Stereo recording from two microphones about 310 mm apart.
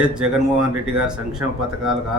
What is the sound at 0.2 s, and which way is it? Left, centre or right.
A man's voice, centre.